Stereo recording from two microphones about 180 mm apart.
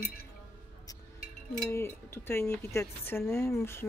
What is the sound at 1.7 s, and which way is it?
Speech, 15° left (ahead or behind).